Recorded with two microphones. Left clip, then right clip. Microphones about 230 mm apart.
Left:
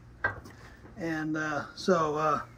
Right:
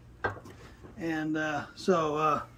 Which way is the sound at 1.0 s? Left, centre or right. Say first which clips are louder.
Right 1 dB; centre.